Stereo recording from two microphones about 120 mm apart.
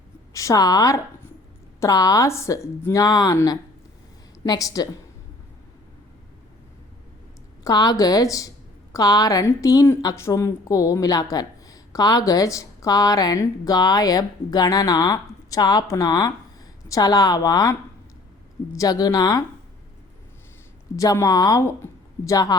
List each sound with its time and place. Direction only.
0.3 s a woman's voice: 30° left (ahead or behind)
4.4 s a woman's voice: 30° left (ahead or behind)
7.6 s a woman's voice: 30° left (ahead or behind)
18.8 s a woman's voice: 30° left (ahead or behind)
20.9 s a woman's voice: 25° left (ahead or behind)